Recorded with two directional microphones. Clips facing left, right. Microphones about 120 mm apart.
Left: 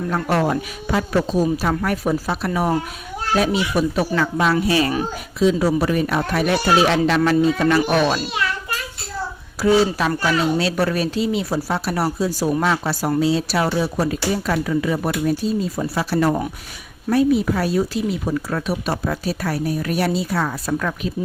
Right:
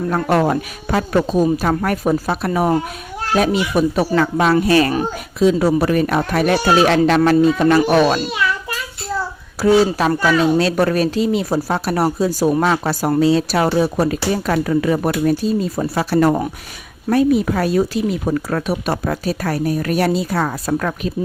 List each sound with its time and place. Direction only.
0.1 s speech: 45° right (ahead or behind)
9.6 s speech: 40° right (ahead or behind)